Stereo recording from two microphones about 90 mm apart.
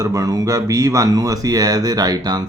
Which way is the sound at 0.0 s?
40° right (ahead or behind).